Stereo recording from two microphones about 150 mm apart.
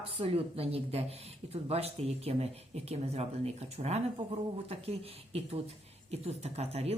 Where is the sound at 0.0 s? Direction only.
40° right (ahead or behind).